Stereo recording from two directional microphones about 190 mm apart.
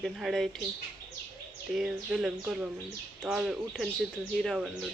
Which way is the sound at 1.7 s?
5° right (ahead or behind).